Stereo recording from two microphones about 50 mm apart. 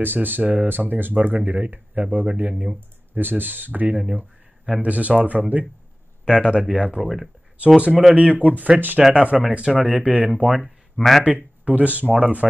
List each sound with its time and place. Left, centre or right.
0.0 s speech: right
2.5 s speech: centre
3.2 s speech: right
3.9 s speech: centre
4.8 s speech: right
6.2 s speech: centre
7.0 s speech: centre
7.5 s speech: right
9.8 s speech: centre
10.0 s speech: right
10.6 s speech: centre
11.2 s speech: right